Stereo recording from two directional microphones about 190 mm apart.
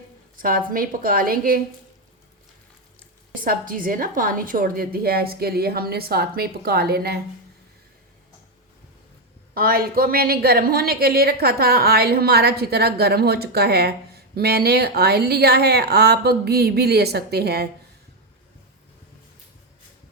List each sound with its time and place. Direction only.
0.3 s a woman's voice: 50° right (ahead or behind)
3.4 s a woman's voice: 45° right (ahead or behind)
9.6 s a woman's voice: 50° right (ahead or behind)